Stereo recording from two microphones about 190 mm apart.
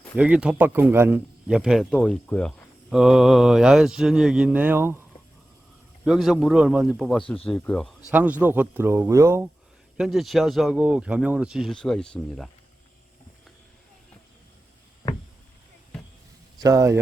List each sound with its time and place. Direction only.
0.2 s speech: 5° right (ahead or behind)
6.1 s speech: centre (ahead or behind)
8.1 s speech: 10° right (ahead or behind)
10.0 s speech: centre (ahead or behind)
16.6 s speech: 20° right (ahead or behind)